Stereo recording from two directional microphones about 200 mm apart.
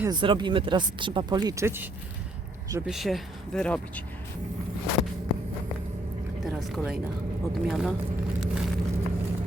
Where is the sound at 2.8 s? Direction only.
Centre (ahead or behind).